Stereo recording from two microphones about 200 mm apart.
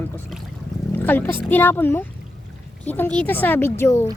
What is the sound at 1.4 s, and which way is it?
Speech, 10° left (ahead or behind).